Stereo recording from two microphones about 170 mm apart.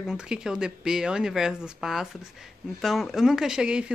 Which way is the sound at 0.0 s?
5° right (ahead or behind).